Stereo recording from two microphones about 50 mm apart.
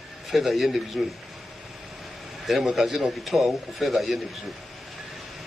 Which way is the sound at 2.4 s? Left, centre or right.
Centre.